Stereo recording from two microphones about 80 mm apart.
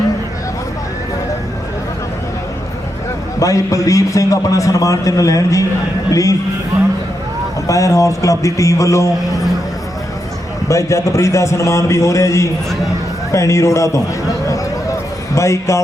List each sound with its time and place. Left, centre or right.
3.4 s a man's voice: left
7.7 s a man's voice: left
10.7 s a man's voice: left
14.4 s a sound: left
15.4 s a man's voice: left